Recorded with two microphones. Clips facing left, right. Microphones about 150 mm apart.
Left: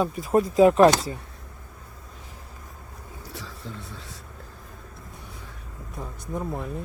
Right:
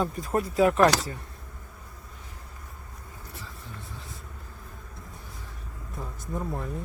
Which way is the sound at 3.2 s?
90° left.